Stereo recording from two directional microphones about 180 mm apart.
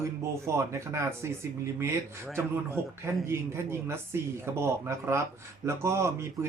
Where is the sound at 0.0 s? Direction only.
15° right (ahead or behind).